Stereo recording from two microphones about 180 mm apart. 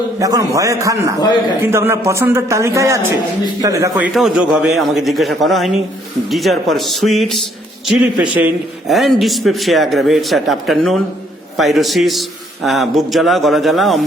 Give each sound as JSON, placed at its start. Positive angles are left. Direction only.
{"t": 0.2, "sound": "a man's voice", "side_deg": -20}
{"t": 3.9, "sound": "a man's voice", "side_deg": -5}